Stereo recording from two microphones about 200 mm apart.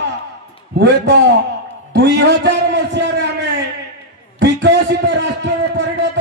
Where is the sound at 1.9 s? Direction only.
60° right (ahead or behind).